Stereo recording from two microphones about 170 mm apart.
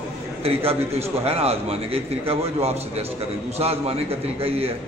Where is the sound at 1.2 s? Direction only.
35° right (ahead or behind).